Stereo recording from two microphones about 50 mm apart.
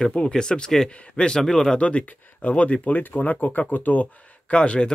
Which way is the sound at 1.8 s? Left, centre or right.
Left.